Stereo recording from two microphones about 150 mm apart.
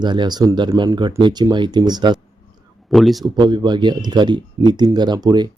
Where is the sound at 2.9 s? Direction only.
Centre (ahead or behind).